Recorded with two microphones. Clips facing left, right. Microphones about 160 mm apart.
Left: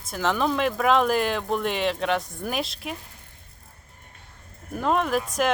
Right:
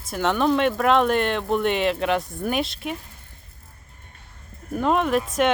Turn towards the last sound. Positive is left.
turn(degrees=0)  # may be behind; listen again after turning